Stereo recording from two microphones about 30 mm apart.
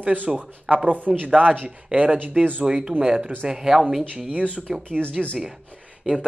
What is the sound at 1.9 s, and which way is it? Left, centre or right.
Speech, right.